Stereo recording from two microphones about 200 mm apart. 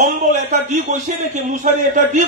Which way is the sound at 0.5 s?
40° right (ahead or behind).